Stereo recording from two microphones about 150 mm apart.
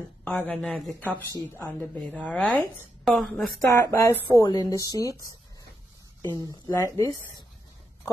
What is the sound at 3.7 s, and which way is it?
A woman's voice, 20° left (ahead or behind).